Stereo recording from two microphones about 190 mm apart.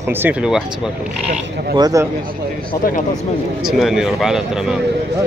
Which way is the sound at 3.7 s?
Centre (ahead or behind).